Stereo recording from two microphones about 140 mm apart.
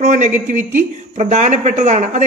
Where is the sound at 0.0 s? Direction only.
60° right (ahead or behind).